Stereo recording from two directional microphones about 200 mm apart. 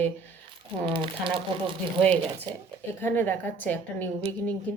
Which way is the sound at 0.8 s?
25° right (ahead or behind).